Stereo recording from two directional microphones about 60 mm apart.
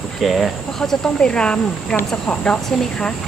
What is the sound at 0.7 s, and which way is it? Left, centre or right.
Speech, centre.